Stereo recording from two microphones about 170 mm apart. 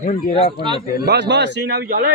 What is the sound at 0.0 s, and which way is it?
Speech, 50° left (ahead or behind).